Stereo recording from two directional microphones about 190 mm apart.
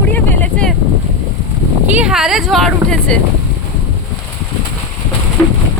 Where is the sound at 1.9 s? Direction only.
5° right (ahead or behind).